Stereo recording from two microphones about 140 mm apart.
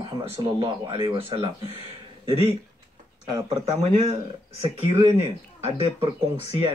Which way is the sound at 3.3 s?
30° right (ahead or behind).